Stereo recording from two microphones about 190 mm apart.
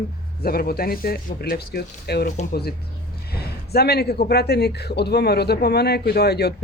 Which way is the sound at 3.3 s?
55° left (ahead or behind).